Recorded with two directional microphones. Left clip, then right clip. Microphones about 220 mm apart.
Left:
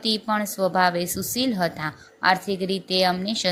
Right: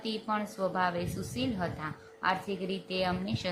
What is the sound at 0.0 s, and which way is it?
A woman's voice, 20° left (ahead or behind).